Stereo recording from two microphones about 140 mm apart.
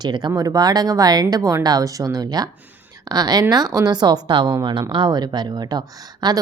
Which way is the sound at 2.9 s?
25° right (ahead or behind).